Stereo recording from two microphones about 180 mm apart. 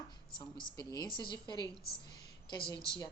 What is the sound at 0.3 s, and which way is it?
A woman's voice, 25° left (ahead or behind).